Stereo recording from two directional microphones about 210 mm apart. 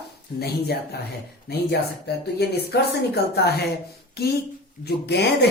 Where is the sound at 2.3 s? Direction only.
50° left (ahead or behind).